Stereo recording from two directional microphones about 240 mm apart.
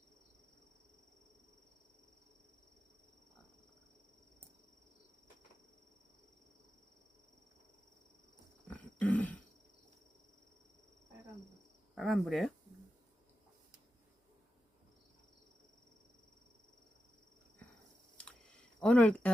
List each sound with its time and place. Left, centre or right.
8.6 s a sound: centre
11.9 s speech: centre
18.8 s speech: centre